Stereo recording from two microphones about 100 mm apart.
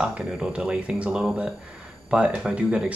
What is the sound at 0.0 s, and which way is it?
Speech, 5° right (ahead or behind).